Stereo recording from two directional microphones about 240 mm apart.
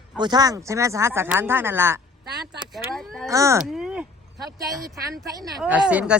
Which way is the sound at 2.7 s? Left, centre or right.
Centre.